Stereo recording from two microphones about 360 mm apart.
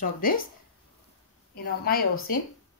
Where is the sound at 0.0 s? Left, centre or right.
Left.